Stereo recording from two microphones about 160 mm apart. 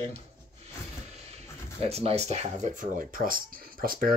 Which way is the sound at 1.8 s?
40° right (ahead or behind).